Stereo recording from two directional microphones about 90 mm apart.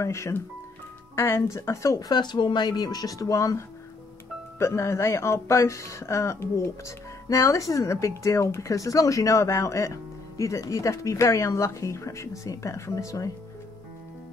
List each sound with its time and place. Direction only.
0.0 s speech: 35° left (ahead or behind)
2.0 s speech: 50° left (ahead or behind)